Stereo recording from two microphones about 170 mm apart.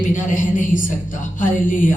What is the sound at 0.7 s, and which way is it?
Speech, 50° left (ahead or behind).